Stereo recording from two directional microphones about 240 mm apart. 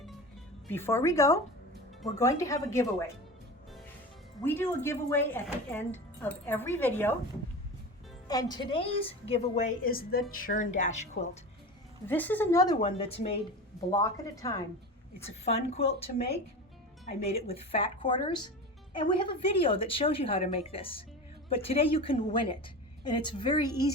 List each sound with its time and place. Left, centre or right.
0.7 s a woman's voice: centre
4.4 s a woman's voice: centre
8.3 s a woman's voice: centre
12.0 s a woman's voice: centre
15.2 s a woman's voice: left
17.2 s a woman's voice: left